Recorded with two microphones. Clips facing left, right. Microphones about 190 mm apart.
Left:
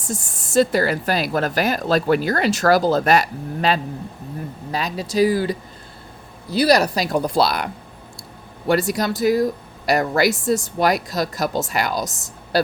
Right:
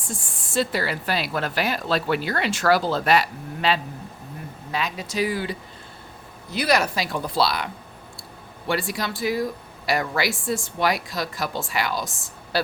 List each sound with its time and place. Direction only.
0.0 s speech: 40° left (ahead or behind)